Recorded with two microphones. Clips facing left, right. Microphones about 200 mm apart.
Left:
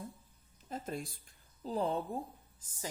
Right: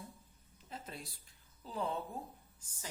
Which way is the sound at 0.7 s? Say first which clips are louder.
Left 8 dB; 50° left (ahead or behind).